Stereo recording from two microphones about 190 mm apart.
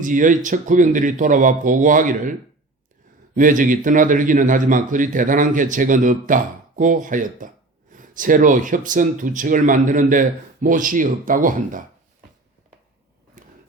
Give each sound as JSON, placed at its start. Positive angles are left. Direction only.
{"t": 0.0, "sound": "a man's voice", "side_deg": -45}
{"t": 3.3, "sound": "a man's voice", "side_deg": -45}
{"t": 13.4, "sound": "a sound", "side_deg": -45}